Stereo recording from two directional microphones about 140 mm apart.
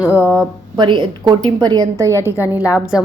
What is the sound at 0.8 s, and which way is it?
A woman's voice, 35° right (ahead or behind).